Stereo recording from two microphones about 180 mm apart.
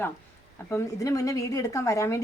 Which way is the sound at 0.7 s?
20° left (ahead or behind).